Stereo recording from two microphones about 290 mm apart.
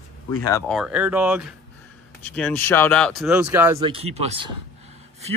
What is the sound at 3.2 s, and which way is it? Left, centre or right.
Speech, centre.